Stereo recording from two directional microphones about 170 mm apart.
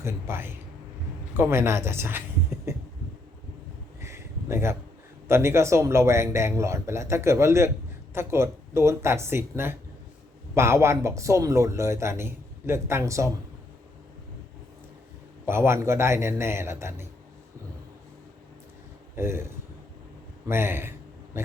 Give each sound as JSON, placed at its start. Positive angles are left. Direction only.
{"t": 0.0, "sound": "speech", "side_deg": -15}
{"t": 2.7, "sound": "a sound", "side_deg": -15}
{"t": 4.0, "sound": "a sound", "side_deg": -15}
{"t": 5.3, "sound": "speech", "side_deg": -15}
{"t": 15.4, "sound": "speech", "side_deg": -15}
{"t": 19.1, "sound": "speech", "side_deg": -15}
{"t": 20.5, "sound": "speech", "side_deg": -15}